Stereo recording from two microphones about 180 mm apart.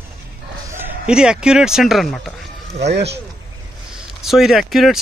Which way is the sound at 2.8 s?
70° right (ahead or behind).